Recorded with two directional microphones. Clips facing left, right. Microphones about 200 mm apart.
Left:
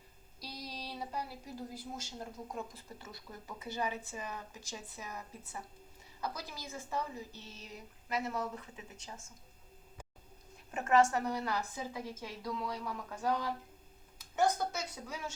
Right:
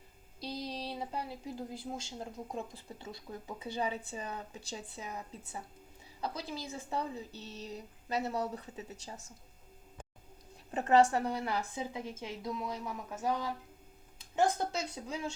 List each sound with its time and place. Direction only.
0.3 s speech: 25° right (ahead or behind)
6.2 s speech: 25° right (ahead or behind)
7.3 s speech: 35° right (ahead or behind)
10.7 s speech: 35° right (ahead or behind); by 13.5 s 20° right (ahead or behind)
14.4 s speech: 30° right (ahead or behind)